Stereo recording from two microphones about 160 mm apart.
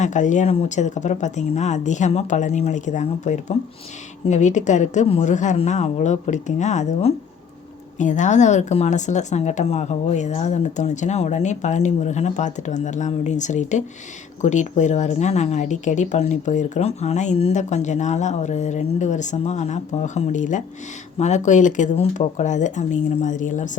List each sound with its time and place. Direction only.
0.0 s a woman's voice: 50° left (ahead or behind)